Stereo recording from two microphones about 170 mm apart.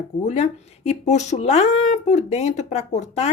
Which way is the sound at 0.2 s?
45° left (ahead or behind).